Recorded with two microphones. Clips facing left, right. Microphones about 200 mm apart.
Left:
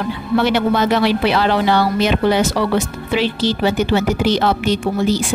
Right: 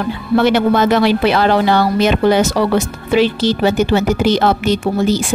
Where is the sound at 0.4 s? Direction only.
50° right (ahead or behind).